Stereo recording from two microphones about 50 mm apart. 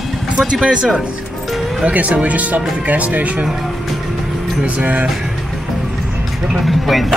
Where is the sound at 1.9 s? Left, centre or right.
Right.